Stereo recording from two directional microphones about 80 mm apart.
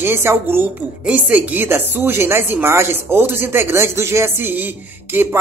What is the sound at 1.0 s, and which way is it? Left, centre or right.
Speech, centre.